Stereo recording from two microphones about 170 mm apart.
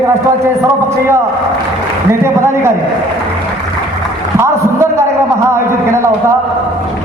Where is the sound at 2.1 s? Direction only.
15° right (ahead or behind).